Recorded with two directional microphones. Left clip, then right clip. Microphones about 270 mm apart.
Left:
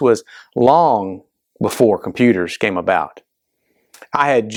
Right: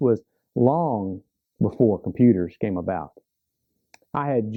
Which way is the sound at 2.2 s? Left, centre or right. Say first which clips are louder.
Left 6 dB; centre.